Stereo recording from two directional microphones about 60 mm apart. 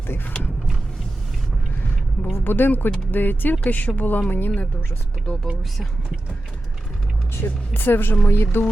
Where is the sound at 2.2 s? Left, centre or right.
Left.